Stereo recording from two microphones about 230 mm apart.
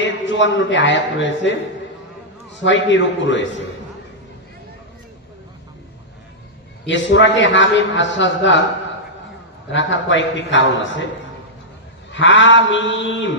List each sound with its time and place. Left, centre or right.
0.0 s a man's voice: left
2.6 s a man's voice: left
6.9 s a man's voice: left
9.7 s a man's voice: left
12.1 s a man's voice: left